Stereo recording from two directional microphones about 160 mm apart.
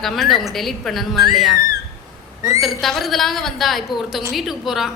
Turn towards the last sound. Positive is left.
turn(degrees=0)  # may be behind; listen again after turning